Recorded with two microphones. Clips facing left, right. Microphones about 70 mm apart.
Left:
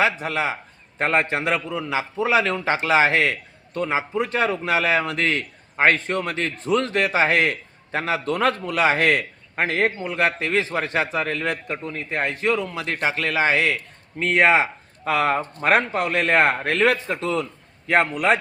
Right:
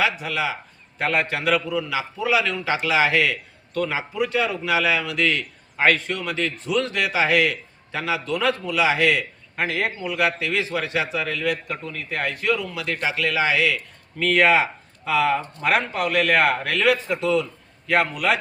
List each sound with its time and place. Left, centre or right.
0.0 s a man's voice: left
14.2 s speech: left
15.0 s a man's voice: left